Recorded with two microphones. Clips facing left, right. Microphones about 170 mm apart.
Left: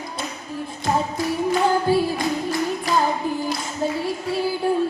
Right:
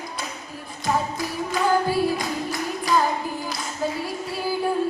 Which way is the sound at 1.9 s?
25° left (ahead or behind).